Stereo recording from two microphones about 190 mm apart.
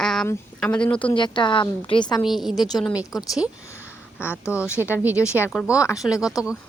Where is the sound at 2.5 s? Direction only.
20° left (ahead or behind).